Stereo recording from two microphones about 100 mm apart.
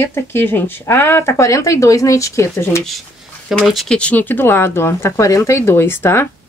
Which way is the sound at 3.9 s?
15° left (ahead or behind).